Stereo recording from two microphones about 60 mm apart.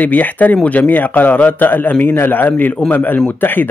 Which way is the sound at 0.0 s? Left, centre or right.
Left.